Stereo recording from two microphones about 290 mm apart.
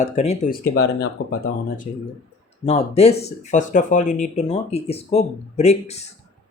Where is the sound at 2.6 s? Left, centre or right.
Left.